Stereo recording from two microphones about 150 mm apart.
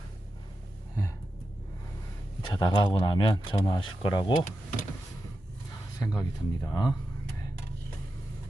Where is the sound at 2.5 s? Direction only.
30° left (ahead or behind).